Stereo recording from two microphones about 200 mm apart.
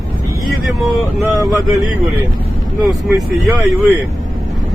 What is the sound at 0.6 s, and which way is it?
Speech, centre (ahead or behind).